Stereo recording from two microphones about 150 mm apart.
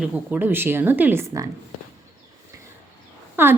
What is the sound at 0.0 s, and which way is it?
A woman's voice, 10° right (ahead or behind).